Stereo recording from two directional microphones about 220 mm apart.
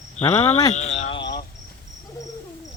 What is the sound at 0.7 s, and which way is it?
Cricket, 30° left (ahead or behind).